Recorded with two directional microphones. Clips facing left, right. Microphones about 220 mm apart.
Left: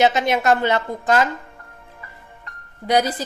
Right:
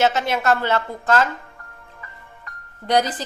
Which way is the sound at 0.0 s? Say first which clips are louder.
Left 2 dB; 15° left (ahead or behind).